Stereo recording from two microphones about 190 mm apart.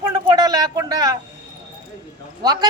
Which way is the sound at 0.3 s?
20° right (ahead or behind).